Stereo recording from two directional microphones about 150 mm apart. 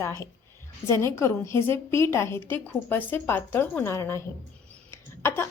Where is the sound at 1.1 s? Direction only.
20° left (ahead or behind).